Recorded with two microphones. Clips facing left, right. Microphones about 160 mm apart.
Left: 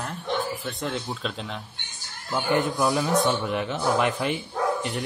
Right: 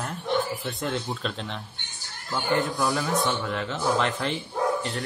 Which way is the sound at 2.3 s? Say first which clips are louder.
Left 2 dB; 15° left (ahead or behind).